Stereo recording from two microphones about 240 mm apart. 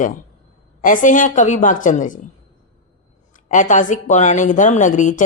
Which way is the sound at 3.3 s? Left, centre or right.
Left.